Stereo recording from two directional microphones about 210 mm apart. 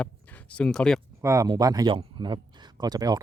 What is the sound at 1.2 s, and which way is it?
Speech, 15° right (ahead or behind).